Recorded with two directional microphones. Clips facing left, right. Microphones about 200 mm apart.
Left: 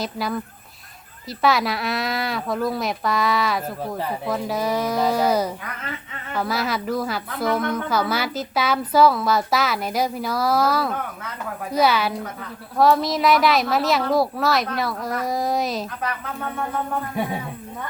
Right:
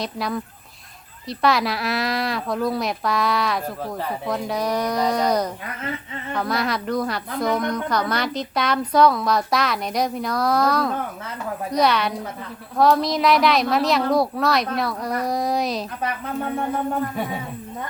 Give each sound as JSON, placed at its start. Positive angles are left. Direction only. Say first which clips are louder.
{"t": 0.0, "sound": "speech", "louder": "even", "side_deg": 0}
{"t": 16.0, "sound": "speech", "louder": "right 3 dB", "side_deg": -30}